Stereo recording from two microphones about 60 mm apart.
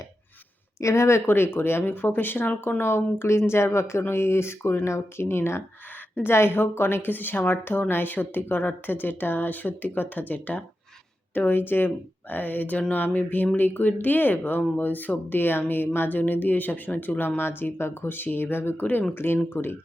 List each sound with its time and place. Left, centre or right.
0.8 s a woman's voice: left
12.9 s a sound: left
13.6 s a woman's voice: left